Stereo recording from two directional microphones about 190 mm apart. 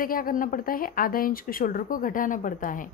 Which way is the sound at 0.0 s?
50° left (ahead or behind).